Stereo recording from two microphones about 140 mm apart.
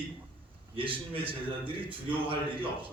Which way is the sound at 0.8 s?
40° right (ahead or behind).